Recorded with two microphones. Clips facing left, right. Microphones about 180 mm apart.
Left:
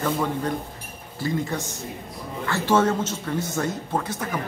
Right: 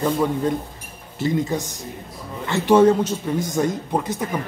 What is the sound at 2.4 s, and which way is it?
A man's voice, 20° right (ahead or behind).